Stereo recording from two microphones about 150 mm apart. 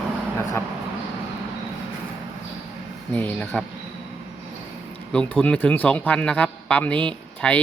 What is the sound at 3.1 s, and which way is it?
Speech, 10° left (ahead or behind).